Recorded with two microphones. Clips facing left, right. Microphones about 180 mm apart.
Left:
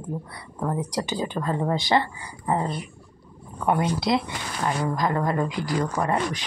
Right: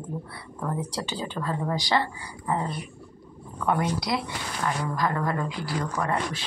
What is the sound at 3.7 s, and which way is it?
Speech, 25° left (ahead or behind).